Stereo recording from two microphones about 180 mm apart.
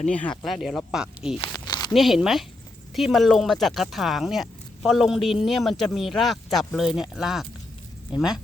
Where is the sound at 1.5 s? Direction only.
20° left (ahead or behind).